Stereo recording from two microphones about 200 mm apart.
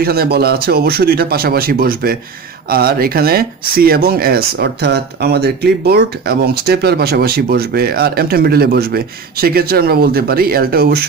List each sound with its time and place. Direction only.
0.0 s speech: 50° right (ahead or behind)